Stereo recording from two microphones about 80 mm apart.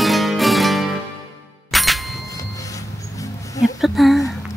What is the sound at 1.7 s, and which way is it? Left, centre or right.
Ding, centre.